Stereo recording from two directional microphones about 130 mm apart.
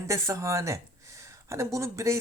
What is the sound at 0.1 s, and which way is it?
Speech, 25° right (ahead or behind).